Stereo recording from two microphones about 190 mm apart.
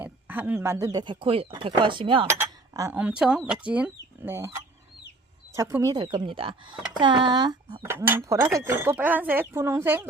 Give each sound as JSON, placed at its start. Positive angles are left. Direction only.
{"t": 0.0, "sound": "speech", "side_deg": -10}
{"t": 2.2, "sound": "speech", "side_deg": -15}